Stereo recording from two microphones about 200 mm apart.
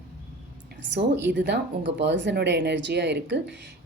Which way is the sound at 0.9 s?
60° right (ahead or behind).